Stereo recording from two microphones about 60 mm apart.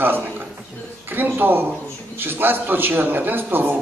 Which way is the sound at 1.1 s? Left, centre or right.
Right.